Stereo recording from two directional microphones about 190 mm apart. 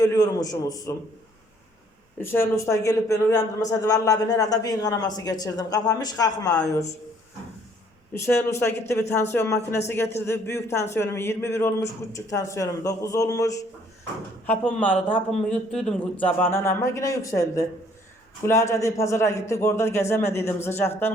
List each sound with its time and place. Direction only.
0.0 s a man's voice: 20° left (ahead or behind)
2.1 s a man's voice: 10° left (ahead or behind)
8.1 s a man's voice: 15° left (ahead or behind)